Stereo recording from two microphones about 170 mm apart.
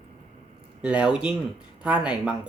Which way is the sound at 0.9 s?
5° right (ahead or behind).